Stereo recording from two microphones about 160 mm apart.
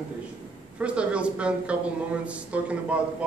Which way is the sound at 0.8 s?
5° right (ahead or behind).